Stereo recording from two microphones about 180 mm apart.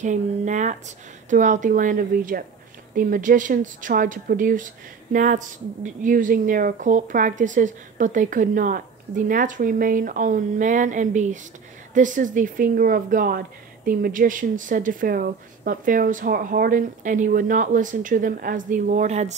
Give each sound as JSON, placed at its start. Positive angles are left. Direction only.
{"t": 0.0, "sound": "speech", "side_deg": -40}